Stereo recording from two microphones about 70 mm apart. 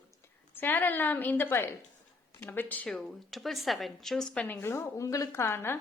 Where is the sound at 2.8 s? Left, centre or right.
Centre.